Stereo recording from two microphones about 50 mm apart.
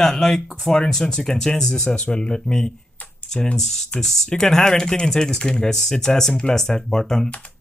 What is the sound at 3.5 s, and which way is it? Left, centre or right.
Speech, centre.